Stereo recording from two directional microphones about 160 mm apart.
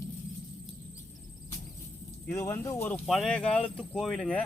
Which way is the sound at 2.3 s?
20° left (ahead or behind).